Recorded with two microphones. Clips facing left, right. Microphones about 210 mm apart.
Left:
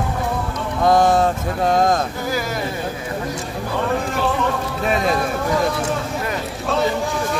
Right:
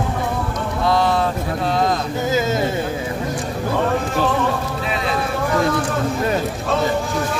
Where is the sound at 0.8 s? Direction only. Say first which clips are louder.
Left 4 dB; 45° left (ahead or behind).